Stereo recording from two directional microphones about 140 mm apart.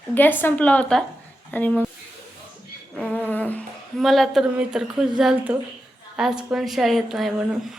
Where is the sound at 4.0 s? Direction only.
Centre (ahead or behind).